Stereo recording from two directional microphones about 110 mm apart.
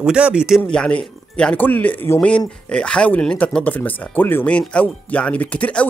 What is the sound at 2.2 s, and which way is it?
Speech, 10° left (ahead or behind).